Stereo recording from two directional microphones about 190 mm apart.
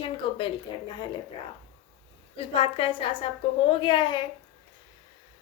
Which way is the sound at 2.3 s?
30° left (ahead or behind).